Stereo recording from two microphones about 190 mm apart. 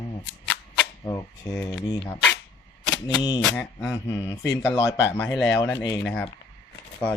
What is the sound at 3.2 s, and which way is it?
Speech, 20° left (ahead or behind).